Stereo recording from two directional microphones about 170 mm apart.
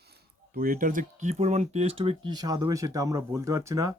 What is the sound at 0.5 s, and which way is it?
Speech, 55° right (ahead or behind).